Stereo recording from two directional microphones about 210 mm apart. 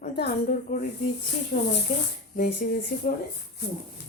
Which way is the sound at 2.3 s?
40° left (ahead or behind).